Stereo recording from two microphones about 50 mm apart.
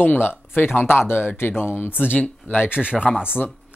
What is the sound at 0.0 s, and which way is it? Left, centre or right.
Speech, left.